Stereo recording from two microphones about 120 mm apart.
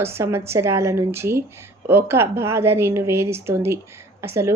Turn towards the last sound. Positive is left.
turn(degrees=-20)  # may be behind; listen again after turning